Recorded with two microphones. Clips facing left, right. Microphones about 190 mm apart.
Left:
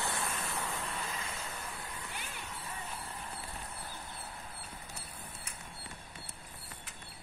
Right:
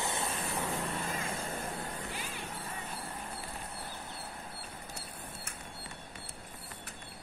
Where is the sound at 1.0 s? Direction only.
50° right (ahead or behind).